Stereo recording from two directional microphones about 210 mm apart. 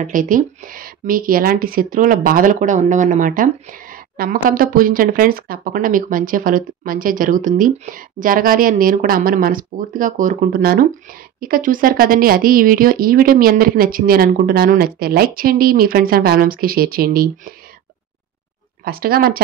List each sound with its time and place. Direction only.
0.0 s speech: 40° right (ahead or behind)
18.9 s speech: 45° right (ahead or behind)